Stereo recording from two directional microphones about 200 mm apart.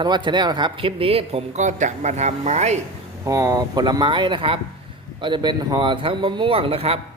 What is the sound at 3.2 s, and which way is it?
Speech, 15° right (ahead or behind).